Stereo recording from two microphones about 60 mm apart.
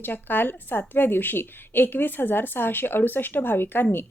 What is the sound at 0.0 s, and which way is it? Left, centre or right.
Speech, left.